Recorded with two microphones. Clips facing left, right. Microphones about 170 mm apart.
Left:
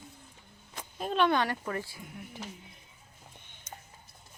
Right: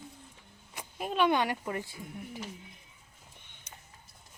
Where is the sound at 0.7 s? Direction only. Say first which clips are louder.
Left 2 dB; 10° right (ahead or behind).